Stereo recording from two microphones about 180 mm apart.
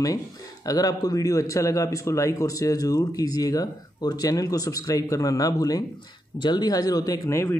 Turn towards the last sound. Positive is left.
turn(degrees=15)  # may be behind; listen again after turning